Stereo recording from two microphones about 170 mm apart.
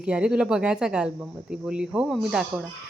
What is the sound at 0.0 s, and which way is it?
A woman's voice, 5° right (ahead or behind).